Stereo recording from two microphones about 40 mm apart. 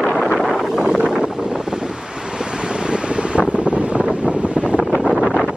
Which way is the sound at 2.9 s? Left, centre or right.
Right.